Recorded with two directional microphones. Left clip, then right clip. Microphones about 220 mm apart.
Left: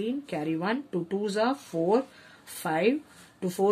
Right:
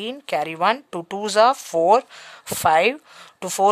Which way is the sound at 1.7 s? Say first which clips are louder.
Right 11 dB; 75° right (ahead or behind).